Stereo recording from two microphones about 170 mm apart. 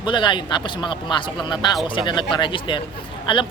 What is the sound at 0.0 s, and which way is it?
Speech, 25° left (ahead or behind).